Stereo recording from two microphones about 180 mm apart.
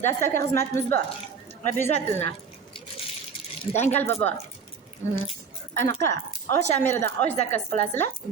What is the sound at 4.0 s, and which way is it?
Speech, 10° left (ahead or behind).